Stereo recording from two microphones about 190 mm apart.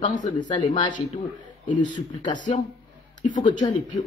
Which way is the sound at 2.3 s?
40° left (ahead or behind).